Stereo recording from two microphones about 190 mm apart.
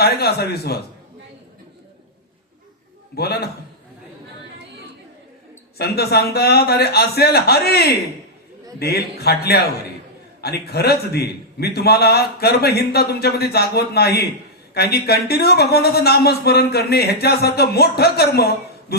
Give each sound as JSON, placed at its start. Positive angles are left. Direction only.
{"t": 0.0, "sound": "speech", "side_deg": 55}
{"t": 3.2, "sound": "speech", "side_deg": 55}
{"t": 5.7, "sound": "speech", "side_deg": 55}